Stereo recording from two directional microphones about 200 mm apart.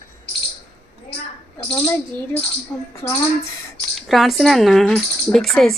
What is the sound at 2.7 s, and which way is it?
Music, 10° left (ahead or behind).